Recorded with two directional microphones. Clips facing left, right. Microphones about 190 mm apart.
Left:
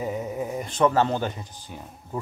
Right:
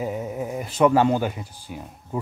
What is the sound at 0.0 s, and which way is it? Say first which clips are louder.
Speech: right 1 dB; 5° right (ahead or behind).